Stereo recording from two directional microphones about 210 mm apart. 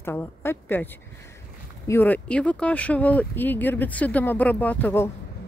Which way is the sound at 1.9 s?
10° left (ahead or behind).